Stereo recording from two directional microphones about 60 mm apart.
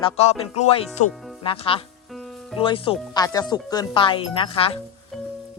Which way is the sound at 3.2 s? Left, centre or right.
Left.